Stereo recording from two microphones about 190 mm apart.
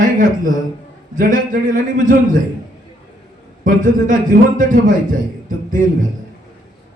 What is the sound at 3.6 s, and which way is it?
A man's voice, 45° right (ahead or behind).